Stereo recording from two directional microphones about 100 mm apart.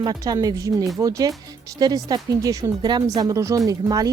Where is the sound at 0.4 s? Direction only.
35° right (ahead or behind).